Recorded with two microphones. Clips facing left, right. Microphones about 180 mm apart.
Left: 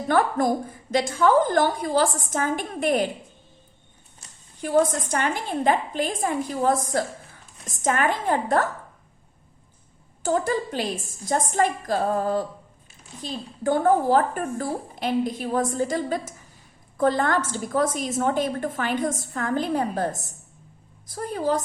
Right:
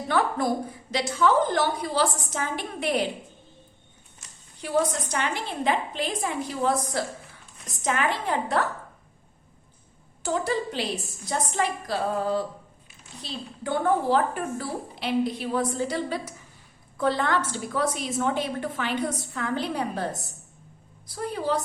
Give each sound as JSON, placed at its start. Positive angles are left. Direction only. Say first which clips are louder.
{"t": 0.1, "sound": "a woman's voice", "louder": "left 3 dB", "side_deg": 50}
{"t": 4.6, "sound": "a woman's voice", "louder": "left 4 dB", "side_deg": 45}
{"t": 10.2, "sound": "a woman's voice", "louder": "left 3 dB", "side_deg": 50}